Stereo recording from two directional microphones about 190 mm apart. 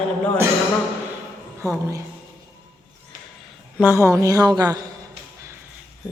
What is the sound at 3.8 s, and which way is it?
Speech, 15° right (ahead or behind).